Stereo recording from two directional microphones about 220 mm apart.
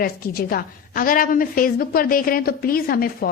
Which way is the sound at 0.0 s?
40° left (ahead or behind).